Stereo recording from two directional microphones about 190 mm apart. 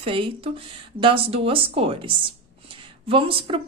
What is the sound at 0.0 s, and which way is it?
Speech, 30° right (ahead or behind).